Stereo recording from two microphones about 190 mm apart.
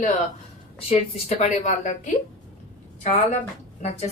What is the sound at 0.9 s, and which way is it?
A woman's voice, 35° left (ahead or behind).